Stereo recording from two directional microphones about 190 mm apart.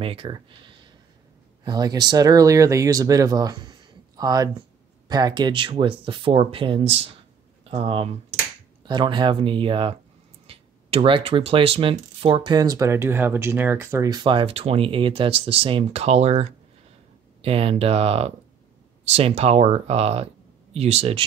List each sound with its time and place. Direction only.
0.0 s speech: 30° right (ahead or behind)